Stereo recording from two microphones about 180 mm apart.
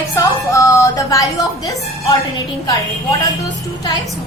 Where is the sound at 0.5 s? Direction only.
15° left (ahead or behind).